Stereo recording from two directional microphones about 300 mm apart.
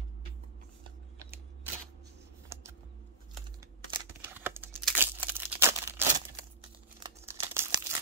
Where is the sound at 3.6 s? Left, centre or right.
Centre.